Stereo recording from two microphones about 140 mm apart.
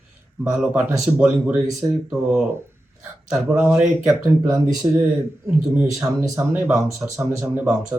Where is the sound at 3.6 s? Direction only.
15° right (ahead or behind).